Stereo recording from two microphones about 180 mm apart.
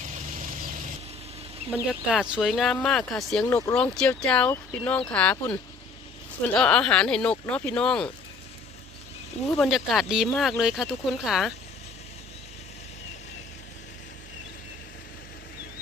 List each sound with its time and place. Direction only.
0.0 s vehicle: 45° right (ahead or behind)
1.9 s speech: 5° right (ahead or behind)
9.5 s speech: centre (ahead or behind)